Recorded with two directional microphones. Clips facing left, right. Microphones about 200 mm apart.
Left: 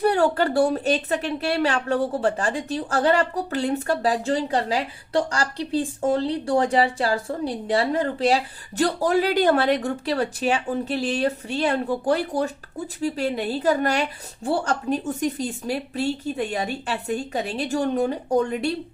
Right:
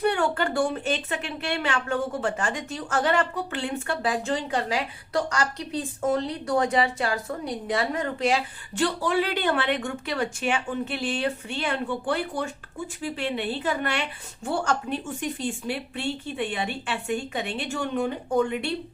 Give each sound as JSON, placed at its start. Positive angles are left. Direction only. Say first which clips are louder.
{"t": 0.0, "sound": "a woman's voice", "louder": "left 4 dB", "side_deg": 35}